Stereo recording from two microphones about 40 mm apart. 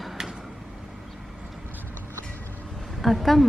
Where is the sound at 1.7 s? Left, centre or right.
Right.